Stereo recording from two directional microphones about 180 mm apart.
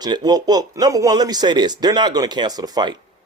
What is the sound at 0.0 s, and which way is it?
A man's voice, 20° right (ahead or behind).